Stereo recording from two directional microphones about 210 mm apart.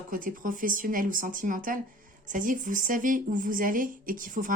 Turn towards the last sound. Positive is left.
turn(degrees=-40)  # may be behind; listen again after turning